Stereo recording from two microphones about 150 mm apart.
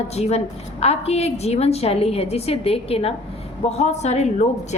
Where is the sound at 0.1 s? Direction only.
45° left (ahead or behind).